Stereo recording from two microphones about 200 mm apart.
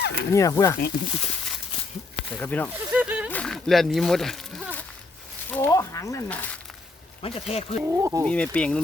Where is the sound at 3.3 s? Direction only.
5° left (ahead or behind).